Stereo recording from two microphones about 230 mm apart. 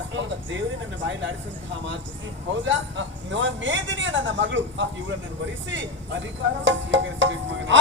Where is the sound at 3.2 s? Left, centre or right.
Right.